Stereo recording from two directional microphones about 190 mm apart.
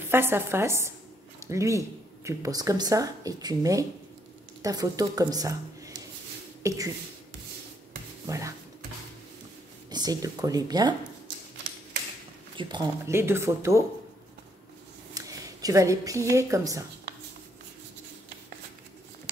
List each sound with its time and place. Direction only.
0.1 s speech: 10° right (ahead or behind)
8.3 s speech: 15° right (ahead or behind)
9.8 s speech: 20° right (ahead or behind)
12.5 s speech: 25° right (ahead or behind)
15.1 s a woman's voice: 20° right (ahead or behind)